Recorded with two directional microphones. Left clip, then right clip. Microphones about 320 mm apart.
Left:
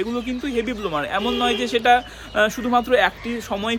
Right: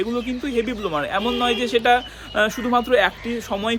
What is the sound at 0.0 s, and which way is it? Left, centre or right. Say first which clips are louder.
A man's voice: right 1 dB; centre.